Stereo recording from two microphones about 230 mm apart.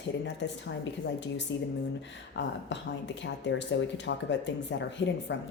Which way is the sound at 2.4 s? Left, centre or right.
Left.